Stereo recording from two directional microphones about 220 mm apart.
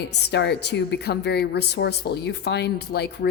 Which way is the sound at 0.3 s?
50° left (ahead or behind).